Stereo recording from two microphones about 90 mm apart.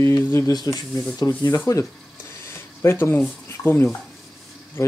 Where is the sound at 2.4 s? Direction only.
30° left (ahead or behind).